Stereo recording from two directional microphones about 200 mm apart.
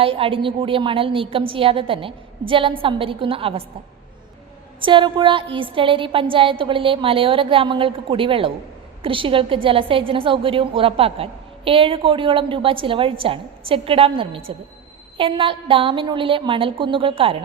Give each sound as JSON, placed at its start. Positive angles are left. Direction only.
{"t": 0.0, "sound": "a woman's voice", "side_deg": -30}
{"t": 4.8, "sound": "a woman's voice", "side_deg": -25}